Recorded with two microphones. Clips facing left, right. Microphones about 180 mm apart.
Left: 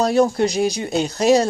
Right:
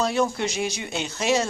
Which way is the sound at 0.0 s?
40° left (ahead or behind).